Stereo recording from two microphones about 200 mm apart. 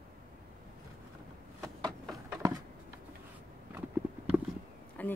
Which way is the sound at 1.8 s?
Centre (ahead or behind).